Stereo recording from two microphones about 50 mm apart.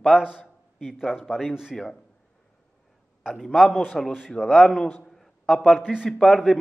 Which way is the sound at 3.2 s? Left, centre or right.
Centre.